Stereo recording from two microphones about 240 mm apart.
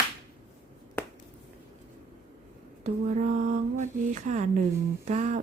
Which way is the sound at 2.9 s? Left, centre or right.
Right.